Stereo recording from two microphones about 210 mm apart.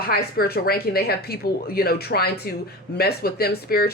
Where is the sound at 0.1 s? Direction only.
45° left (ahead or behind).